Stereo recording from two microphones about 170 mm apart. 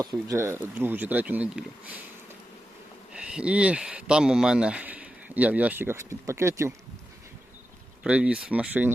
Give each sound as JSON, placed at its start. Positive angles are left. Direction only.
{"t": 0.0, "sound": "speech", "side_deg": -20}
{"t": 3.1, "sound": "speech", "side_deg": -5}
{"t": 8.0, "sound": "speech", "side_deg": -5}